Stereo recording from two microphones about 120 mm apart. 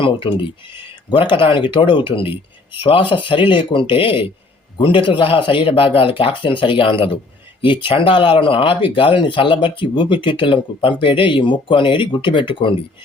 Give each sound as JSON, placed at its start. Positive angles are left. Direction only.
{"t": 0.0, "sound": "speech", "side_deg": 45}